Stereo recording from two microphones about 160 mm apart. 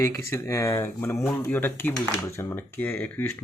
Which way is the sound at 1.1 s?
Centre (ahead or behind).